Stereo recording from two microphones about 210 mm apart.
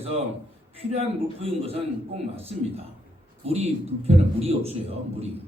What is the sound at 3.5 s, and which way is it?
A man's voice, 30° right (ahead or behind).